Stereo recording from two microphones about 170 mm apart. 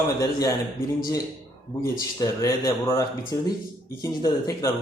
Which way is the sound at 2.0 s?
20° left (ahead or behind).